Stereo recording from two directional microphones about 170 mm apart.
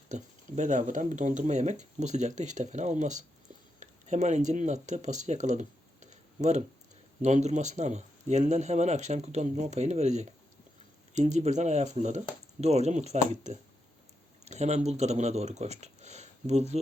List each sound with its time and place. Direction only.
0.1 s speech: 45° right (ahead or behind)
14.4 s a sound: 40° right (ahead or behind)
14.8 s speech: 40° right (ahead or behind)